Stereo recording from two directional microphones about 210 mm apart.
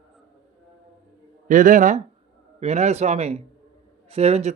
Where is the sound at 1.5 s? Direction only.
40° right (ahead or behind).